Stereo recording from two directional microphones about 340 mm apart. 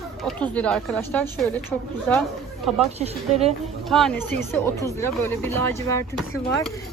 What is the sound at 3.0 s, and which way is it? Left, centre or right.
Speech, centre.